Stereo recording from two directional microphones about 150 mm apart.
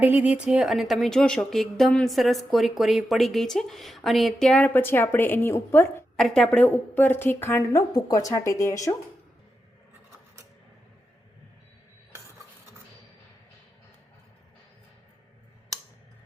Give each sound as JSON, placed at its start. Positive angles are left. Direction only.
{"t": 0.0, "sound": "speech", "side_deg": -10}
{"t": 6.1, "sound": "a woman's voice", "side_deg": 5}